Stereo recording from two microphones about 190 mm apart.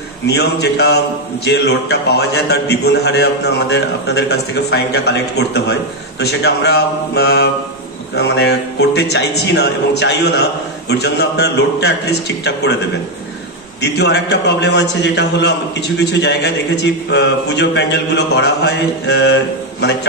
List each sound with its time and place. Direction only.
0.3 s a man's voice: 60° left (ahead or behind)
13.7 s a man's voice: 60° left (ahead or behind)